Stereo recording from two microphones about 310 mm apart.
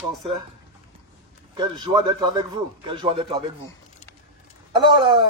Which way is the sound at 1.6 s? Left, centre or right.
Centre.